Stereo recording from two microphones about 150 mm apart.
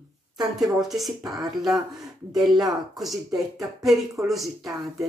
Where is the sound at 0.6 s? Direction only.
Centre (ahead or behind).